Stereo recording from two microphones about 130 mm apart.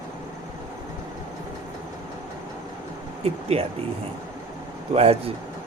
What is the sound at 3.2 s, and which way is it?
Speech, 50° right (ahead or behind).